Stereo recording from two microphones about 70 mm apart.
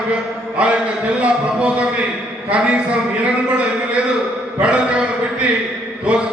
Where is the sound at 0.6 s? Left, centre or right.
Centre.